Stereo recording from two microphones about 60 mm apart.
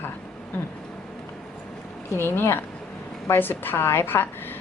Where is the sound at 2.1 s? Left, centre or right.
Left.